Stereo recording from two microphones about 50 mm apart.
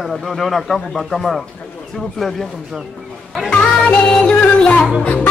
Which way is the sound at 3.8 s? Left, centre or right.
Left.